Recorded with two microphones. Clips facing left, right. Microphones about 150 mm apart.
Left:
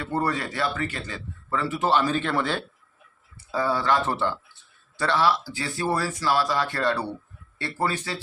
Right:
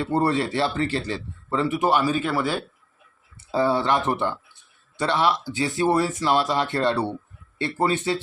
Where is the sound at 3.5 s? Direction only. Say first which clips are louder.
Right 3 dB; 25° right (ahead or behind).